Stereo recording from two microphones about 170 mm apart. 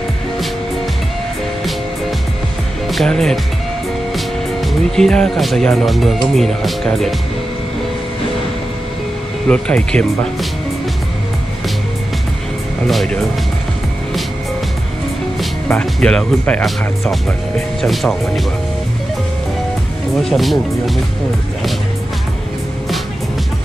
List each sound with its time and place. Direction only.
2.9 s speech: centre (ahead or behind)
9.5 s speech: 5° left (ahead or behind)
12.8 s speech: centre (ahead or behind)
15.7 s speech: 5° left (ahead or behind)
20.2 s speech: centre (ahead or behind)